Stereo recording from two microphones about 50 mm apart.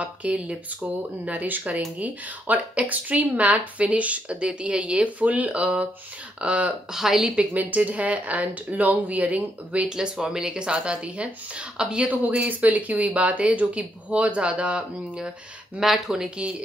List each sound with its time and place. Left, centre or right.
0.0 s speech: right
6.9 s speech: centre
7.5 s speech: right
9.8 s speech: centre
12.4 s speech: right
15.8 s speech: centre